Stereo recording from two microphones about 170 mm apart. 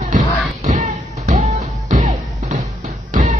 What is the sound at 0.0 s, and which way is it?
Music, 45° right (ahead or behind).